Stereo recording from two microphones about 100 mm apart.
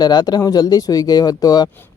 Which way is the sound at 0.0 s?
45° left (ahead or behind).